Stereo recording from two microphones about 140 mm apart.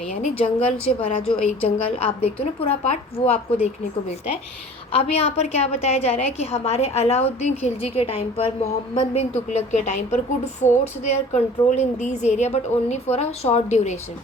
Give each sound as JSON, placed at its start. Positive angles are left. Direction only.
{"t": 0.6, "sound": "a woman's voice", "side_deg": 45}
{"t": 4.9, "sound": "a woman's voice", "side_deg": 45}